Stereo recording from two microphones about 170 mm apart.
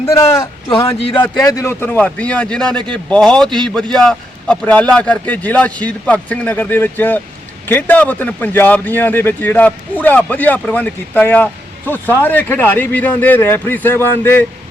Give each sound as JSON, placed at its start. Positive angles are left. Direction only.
{"t": 0.0, "sound": "a man's voice", "side_deg": 20}